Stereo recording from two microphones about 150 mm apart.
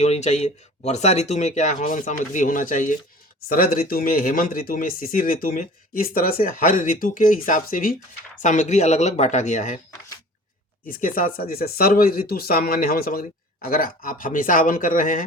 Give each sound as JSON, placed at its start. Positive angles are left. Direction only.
{"t": 0.0, "sound": "speech", "side_deg": 45}
{"t": 3.5, "sound": "speech", "side_deg": 75}
{"t": 8.4, "sound": "speech", "side_deg": 55}
{"t": 10.8, "sound": "speech", "side_deg": 70}